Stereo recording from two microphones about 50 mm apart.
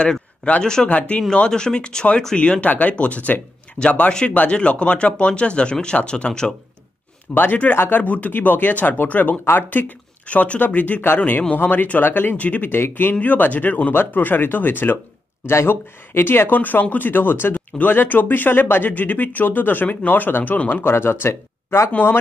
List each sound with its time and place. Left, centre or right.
0.4 s speech: left
1.3 s speech: centre
7.7 s speech: left
8.0 s speech: left
9.4 s speech: left
9.7 s speech: left
15.5 s speech: left
20.8 s speech: left